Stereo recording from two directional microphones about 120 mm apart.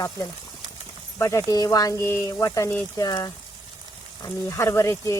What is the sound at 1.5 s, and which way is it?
Speech, 30° left (ahead or behind).